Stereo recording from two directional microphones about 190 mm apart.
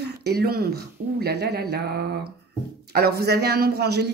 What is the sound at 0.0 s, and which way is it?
A woman's voice, 55° right (ahead or behind).